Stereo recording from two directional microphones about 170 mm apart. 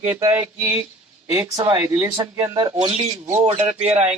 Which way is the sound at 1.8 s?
10° right (ahead or behind).